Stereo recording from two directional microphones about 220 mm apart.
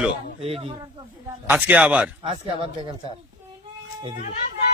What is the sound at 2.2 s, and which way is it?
Speech, 25° right (ahead or behind).